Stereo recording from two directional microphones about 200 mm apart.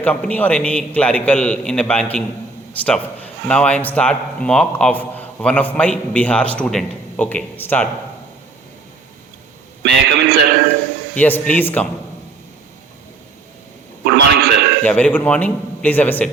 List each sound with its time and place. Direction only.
0.0 s speech: 5° left (ahead or behind)
9.8 s a man's voice: 60° right (ahead or behind)
11.1 s speech: 10° left (ahead or behind)
14.0 s a sound: 55° right (ahead or behind)
14.8 s speech: 5° left (ahead or behind)